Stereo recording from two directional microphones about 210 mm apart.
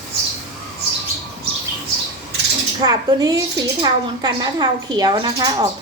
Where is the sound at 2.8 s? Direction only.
20° right (ahead or behind).